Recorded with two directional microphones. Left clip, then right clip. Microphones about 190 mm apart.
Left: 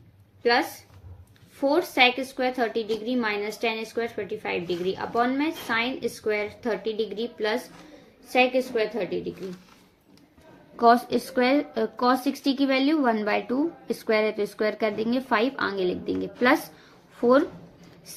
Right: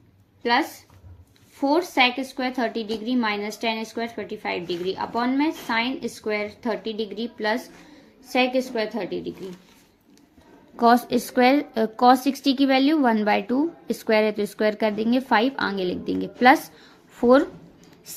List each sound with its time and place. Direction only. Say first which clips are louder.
1.6 s a woman's voice: right 1 dB; 15° right (ahead or behind)
10.8 s a woman's voice: right 1 dB; 30° right (ahead or behind)